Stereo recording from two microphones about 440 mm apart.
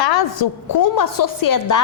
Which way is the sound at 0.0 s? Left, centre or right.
Left.